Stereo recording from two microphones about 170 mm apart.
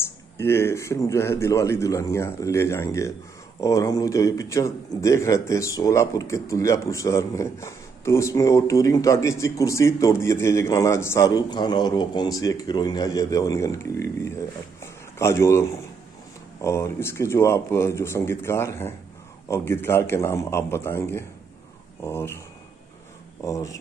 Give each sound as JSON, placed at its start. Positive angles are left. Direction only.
{"t": 0.0, "sound": "a man's voice", "side_deg": 15}
{"t": 23.4, "sound": "a man's voice", "side_deg": 20}